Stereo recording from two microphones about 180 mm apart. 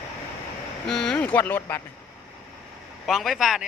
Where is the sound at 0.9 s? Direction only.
5° left (ahead or behind).